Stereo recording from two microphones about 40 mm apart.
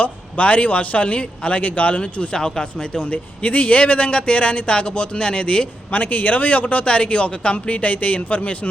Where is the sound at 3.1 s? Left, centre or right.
Left.